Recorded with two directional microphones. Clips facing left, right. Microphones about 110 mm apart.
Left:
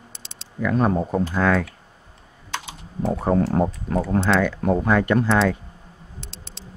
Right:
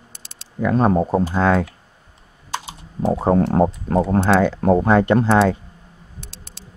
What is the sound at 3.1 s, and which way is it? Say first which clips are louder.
Speech: right 3 dB; 25° right (ahead or behind).